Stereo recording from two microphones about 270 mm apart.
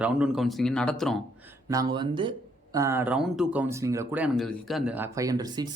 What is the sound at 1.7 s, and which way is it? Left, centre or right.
Speech, centre.